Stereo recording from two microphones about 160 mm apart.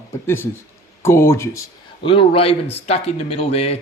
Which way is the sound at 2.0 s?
35° left (ahead or behind).